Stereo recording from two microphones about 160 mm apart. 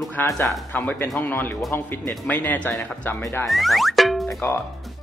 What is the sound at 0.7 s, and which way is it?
Speech, 15° left (ahead or behind).